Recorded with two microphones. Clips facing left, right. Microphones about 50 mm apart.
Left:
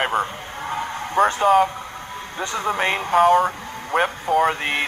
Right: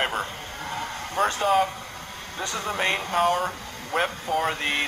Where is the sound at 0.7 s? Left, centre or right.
Centre.